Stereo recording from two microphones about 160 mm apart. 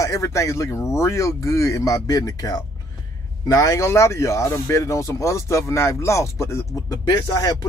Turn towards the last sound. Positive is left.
turn(degrees=25)  # may be behind; listen again after turning